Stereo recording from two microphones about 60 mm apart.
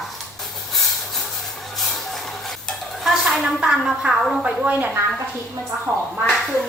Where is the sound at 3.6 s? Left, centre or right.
Centre.